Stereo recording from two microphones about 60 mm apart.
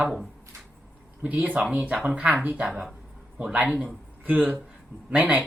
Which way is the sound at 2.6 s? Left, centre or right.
Centre.